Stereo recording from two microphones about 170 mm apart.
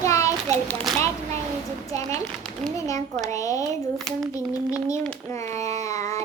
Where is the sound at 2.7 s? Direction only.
20° left (ahead or behind).